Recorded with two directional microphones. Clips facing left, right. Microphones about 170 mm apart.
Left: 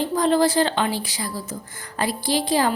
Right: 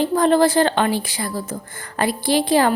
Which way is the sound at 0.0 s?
55° right (ahead or behind).